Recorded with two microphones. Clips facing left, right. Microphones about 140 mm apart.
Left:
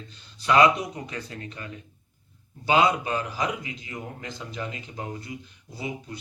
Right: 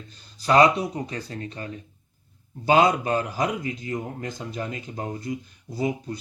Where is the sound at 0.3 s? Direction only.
35° right (ahead or behind).